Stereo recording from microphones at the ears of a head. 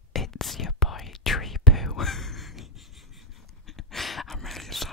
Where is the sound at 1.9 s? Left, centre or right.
Left.